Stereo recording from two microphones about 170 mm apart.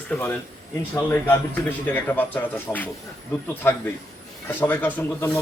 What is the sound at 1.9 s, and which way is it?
A man's voice, 10° left (ahead or behind).